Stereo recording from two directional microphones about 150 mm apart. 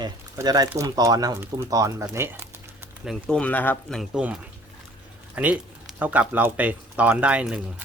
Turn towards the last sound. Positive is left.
turn(degrees=-10)  # may be behind; listen again after turning